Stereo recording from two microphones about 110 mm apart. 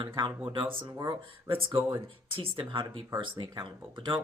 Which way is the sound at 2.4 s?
55° right (ahead or behind).